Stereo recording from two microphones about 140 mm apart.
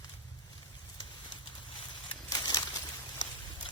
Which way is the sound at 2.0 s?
30° left (ahead or behind).